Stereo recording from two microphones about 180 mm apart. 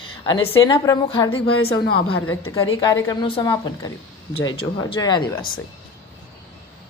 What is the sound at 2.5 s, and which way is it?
Speech, 25° left (ahead or behind).